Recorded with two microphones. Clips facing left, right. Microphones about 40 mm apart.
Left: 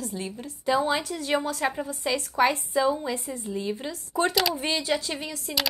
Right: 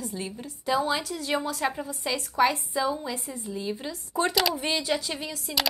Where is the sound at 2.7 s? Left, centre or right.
Left.